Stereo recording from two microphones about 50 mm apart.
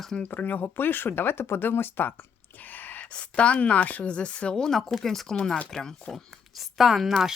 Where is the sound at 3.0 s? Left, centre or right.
Left.